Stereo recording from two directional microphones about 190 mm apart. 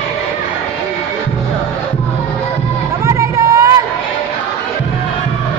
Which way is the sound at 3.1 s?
15° right (ahead or behind).